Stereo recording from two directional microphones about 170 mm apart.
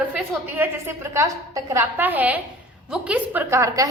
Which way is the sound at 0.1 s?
10° right (ahead or behind).